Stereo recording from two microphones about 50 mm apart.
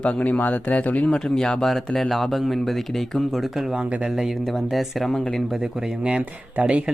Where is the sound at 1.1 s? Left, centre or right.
Centre.